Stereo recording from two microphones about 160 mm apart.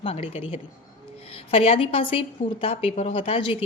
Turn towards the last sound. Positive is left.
turn(degrees=35)  # may be behind; listen again after turning